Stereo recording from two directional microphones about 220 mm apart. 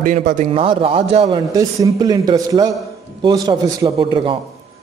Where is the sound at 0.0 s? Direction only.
35° right (ahead or behind).